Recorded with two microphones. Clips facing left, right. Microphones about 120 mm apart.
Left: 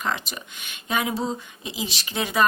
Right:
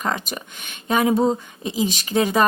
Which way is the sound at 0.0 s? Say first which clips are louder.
Right 3 dB; 45° right (ahead or behind).